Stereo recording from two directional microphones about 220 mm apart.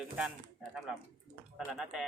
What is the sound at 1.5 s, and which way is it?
Speech, centre (ahead or behind).